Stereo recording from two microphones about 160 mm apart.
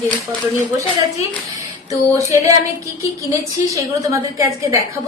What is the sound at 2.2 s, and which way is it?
Speech, 20° right (ahead or behind).